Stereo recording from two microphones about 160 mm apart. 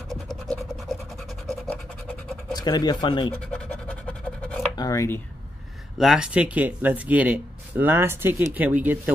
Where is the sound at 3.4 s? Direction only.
5° left (ahead or behind).